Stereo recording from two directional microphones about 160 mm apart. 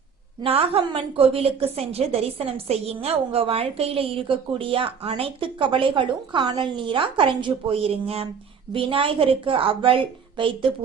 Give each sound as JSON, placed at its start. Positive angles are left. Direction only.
{"t": 0.4, "sound": "a woman's voice", "side_deg": -35}